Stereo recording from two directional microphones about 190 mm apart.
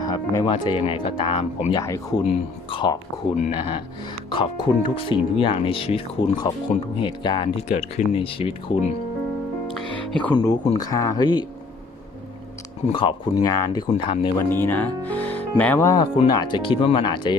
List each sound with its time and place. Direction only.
0.0 s speech: 20° left (ahead or behind)
9.6 s music: 5° left (ahead or behind)
10.3 s speech: 20° left (ahead or behind)
12.9 s speech: 30° left (ahead or behind)
14.5 s speech: 10° left (ahead or behind)